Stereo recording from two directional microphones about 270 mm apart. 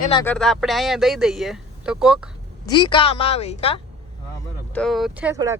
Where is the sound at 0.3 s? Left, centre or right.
Centre.